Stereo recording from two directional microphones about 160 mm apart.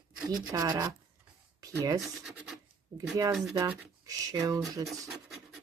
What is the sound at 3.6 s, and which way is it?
Speech, 20° right (ahead or behind).